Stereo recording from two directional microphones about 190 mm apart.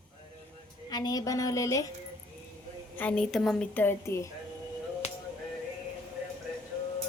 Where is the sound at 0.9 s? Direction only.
20° left (ahead or behind).